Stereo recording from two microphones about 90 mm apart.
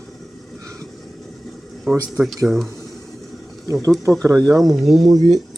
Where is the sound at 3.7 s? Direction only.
40° right (ahead or behind).